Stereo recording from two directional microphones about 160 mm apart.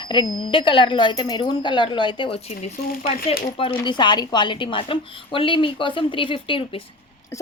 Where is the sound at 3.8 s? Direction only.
30° left (ahead or behind).